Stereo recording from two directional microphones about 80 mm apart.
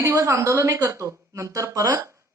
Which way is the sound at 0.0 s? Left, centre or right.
Right.